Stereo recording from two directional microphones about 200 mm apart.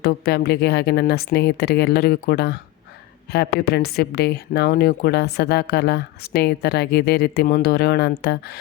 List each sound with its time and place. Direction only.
0.0 s a woman's voice: 50° left (ahead or behind)